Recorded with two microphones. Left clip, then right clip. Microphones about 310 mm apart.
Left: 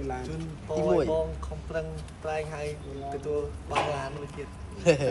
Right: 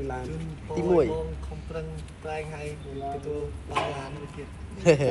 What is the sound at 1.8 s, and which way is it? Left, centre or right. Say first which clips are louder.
Speech: left 4 dB; centre.